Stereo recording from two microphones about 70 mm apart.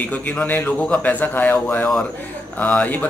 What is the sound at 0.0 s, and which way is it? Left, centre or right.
A man's voice, left.